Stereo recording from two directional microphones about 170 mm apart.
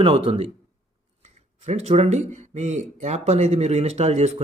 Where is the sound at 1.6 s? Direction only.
40° right (ahead or behind).